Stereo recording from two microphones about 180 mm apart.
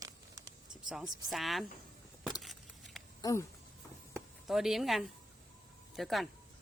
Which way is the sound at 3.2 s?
20° left (ahead or behind).